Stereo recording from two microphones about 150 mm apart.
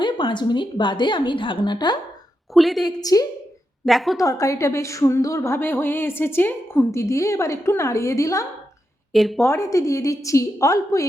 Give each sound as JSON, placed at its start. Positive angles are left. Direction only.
{"t": 0.0, "sound": "a woman's voice", "side_deg": 30}
{"t": 2.5, "sound": "a woman's voice", "side_deg": 0}
{"t": 2.8, "sound": "a woman's voice", "side_deg": 25}
{"t": 3.8, "sound": "a woman's voice", "side_deg": 0}
{"t": 4.2, "sound": "a woman's voice", "side_deg": 20}
{"t": 9.1, "sound": "a woman's voice", "side_deg": 0}
{"t": 9.4, "sound": "a woman's voice", "side_deg": 20}